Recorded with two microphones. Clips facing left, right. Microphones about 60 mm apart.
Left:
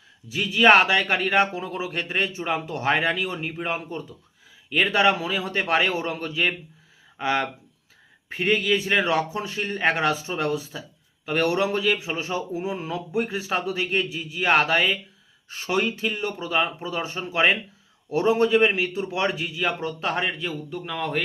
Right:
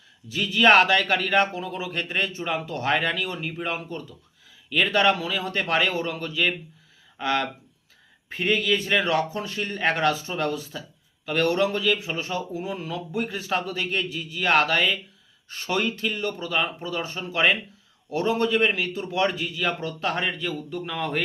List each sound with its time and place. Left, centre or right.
0.3 s a man's voice: centre